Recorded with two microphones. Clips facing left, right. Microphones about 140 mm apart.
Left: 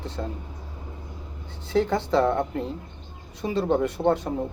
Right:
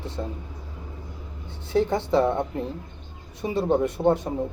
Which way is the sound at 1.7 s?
20° right (ahead or behind).